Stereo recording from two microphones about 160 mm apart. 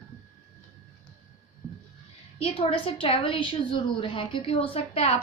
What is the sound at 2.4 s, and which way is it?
A woman's voice, 35° left (ahead or behind).